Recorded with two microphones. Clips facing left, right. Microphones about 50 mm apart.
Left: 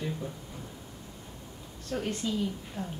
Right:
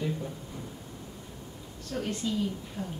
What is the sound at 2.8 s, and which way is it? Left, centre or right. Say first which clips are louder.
Speech: left 1 dB; left.